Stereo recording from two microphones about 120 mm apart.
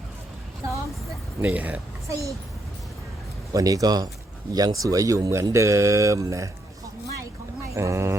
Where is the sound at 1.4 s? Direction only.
15° right (ahead or behind).